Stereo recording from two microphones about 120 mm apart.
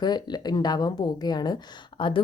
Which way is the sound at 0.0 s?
35° left (ahead or behind).